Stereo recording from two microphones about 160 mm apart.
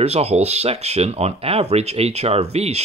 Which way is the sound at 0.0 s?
40° right (ahead or behind).